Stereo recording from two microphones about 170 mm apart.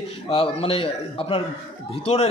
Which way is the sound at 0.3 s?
35° left (ahead or behind).